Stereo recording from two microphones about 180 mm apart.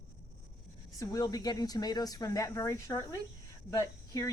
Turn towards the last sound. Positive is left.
turn(degrees=20)  # may be behind; listen again after turning